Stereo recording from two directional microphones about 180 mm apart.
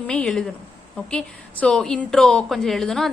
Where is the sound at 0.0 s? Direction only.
5° left (ahead or behind).